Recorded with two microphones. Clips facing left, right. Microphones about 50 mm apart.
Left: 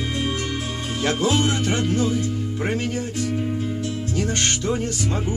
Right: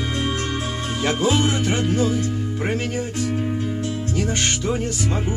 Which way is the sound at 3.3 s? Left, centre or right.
Right.